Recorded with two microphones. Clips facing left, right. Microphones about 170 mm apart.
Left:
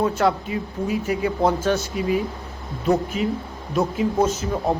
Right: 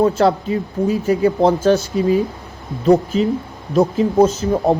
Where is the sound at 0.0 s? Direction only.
30° right (ahead or behind).